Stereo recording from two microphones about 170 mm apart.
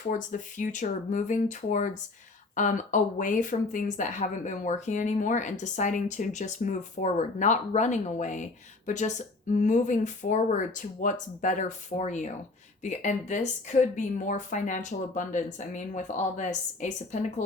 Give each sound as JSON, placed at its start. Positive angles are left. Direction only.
{"t": 0.1, "sound": "speech", "side_deg": 50}